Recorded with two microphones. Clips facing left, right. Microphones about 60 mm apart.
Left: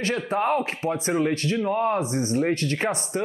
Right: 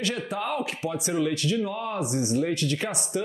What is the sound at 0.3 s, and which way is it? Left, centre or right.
Speech, left.